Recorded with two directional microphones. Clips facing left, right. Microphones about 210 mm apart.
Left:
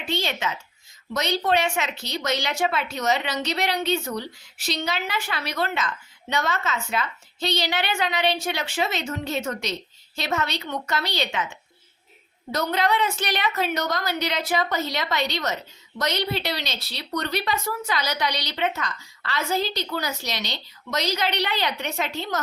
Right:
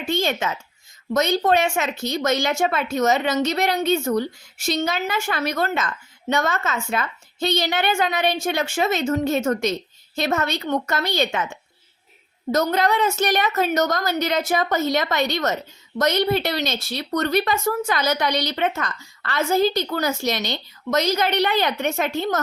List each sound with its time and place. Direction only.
0.0 s speech: 50° right (ahead or behind)